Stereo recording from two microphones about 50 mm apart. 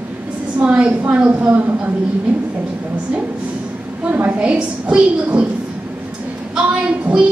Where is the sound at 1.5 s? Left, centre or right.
Right.